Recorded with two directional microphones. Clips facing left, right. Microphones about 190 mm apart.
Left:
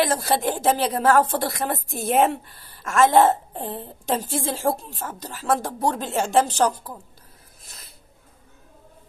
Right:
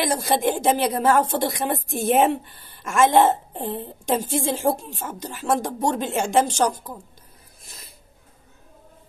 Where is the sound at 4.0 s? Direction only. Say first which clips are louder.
Right 2 dB; 15° right (ahead or behind).